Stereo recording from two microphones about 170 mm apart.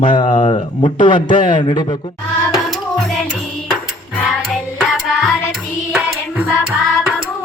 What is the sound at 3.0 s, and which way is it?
Music, 5° left (ahead or behind).